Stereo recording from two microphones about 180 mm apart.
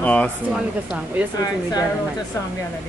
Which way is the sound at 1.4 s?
20° left (ahead or behind).